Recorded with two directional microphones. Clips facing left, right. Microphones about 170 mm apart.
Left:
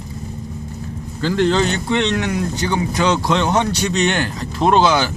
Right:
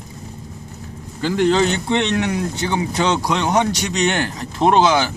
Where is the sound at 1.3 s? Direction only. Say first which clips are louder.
Even; 10° right (ahead or behind).